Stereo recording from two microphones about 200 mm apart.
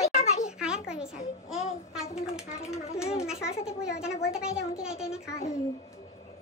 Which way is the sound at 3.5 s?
30° left (ahead or behind).